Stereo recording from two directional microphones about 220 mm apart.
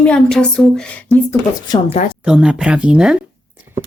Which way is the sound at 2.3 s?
5° right (ahead or behind).